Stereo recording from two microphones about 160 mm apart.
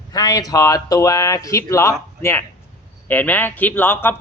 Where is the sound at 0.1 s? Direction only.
25° left (ahead or behind).